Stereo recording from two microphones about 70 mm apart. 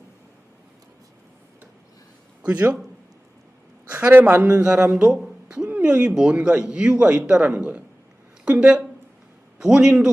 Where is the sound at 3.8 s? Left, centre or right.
Right; by 4.9 s centre.